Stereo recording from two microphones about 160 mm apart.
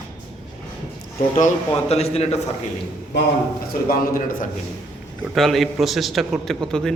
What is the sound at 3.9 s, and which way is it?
Speech, 65° left (ahead or behind).